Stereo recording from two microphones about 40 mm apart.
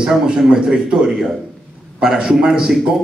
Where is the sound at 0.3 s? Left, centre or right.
Centre.